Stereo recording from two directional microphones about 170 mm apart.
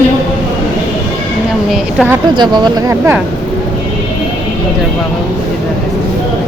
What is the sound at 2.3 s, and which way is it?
Speech, 25° right (ahead or behind).